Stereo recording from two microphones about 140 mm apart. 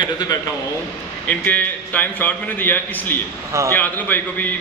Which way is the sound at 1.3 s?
10° left (ahead or behind).